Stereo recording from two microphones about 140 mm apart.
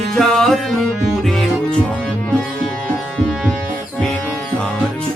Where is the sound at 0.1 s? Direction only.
Centre (ahead or behind).